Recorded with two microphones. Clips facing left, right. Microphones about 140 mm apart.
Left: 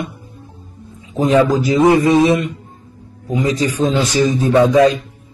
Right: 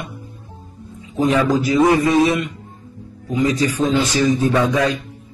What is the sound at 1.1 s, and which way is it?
Speech, 25° left (ahead or behind).